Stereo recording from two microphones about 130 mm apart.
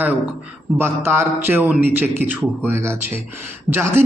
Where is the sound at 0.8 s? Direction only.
20° right (ahead or behind).